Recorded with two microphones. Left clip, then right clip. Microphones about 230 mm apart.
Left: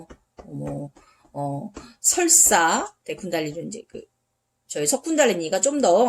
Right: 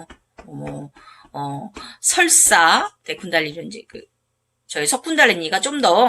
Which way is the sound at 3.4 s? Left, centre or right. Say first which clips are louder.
Right 9 dB; right.